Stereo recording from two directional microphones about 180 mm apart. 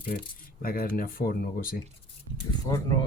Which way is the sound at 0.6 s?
55° left (ahead or behind).